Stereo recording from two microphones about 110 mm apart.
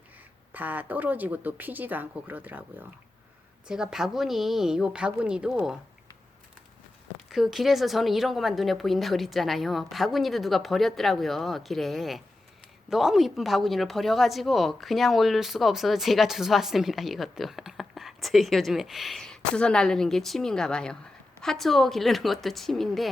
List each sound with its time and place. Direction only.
0.5 s speech: 15° right (ahead or behind)
7.3 s speech: centre (ahead or behind)